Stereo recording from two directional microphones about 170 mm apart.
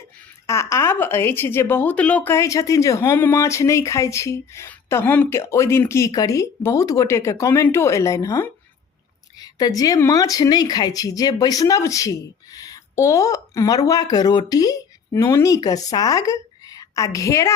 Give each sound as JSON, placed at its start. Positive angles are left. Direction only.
{"t": 0.4, "sound": "a woman's voice", "side_deg": 15}